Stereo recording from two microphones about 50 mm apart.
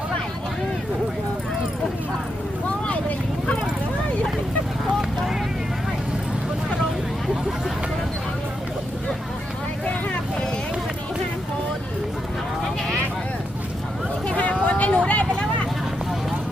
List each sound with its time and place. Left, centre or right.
2.6 s vehicle: left
14.3 s vehicle: left